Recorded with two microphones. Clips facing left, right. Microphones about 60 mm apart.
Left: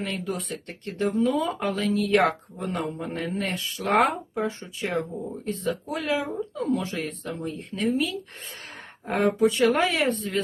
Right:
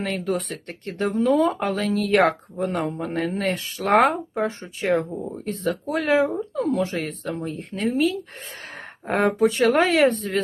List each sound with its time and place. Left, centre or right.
0.0 s speech: right
1.9 s speech: right